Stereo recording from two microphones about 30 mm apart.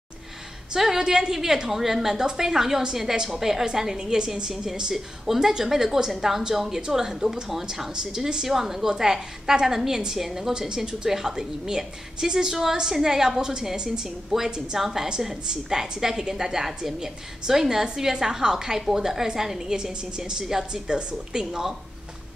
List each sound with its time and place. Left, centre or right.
0.7 s a woman's voice: centre
8.5 s a woman's voice: centre
10.7 s a woman's voice: right
19.7 s a woman's voice: right